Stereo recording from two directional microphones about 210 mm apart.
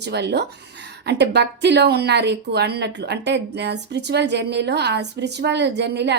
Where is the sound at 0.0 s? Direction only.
55° right (ahead or behind).